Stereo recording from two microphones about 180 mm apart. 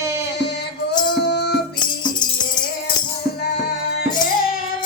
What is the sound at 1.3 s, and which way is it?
Music, 70° left (ahead or behind).